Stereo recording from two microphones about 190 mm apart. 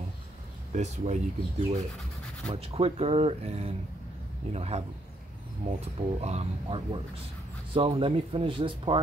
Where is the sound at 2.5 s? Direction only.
30° right (ahead or behind).